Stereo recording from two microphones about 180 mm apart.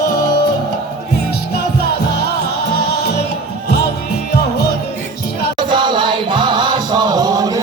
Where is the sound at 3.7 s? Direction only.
65° left (ahead or behind).